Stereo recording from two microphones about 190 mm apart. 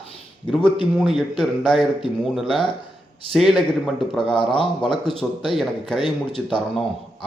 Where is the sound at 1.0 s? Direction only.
Centre (ahead or behind).